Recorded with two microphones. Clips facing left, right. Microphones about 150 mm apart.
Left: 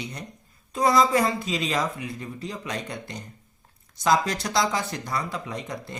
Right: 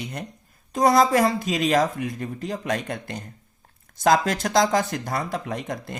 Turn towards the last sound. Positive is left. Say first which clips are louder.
# right 3 dB
turn(degrees=-50)  # may be behind; listen again after turning